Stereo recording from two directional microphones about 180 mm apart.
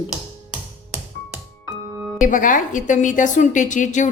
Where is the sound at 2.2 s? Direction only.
45° left (ahead or behind).